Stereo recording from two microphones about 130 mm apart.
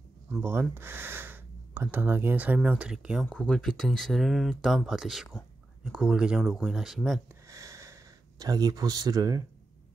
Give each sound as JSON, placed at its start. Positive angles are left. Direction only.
{"t": 0.4, "sound": "speech", "side_deg": -15}
{"t": 3.3, "sound": "speech", "side_deg": 5}
{"t": 7.4, "sound": "a sound", "side_deg": -25}